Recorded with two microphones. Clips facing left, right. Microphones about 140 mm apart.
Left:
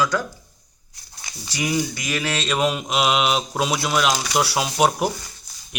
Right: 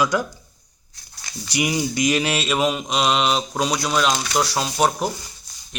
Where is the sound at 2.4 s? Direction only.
Centre (ahead or behind).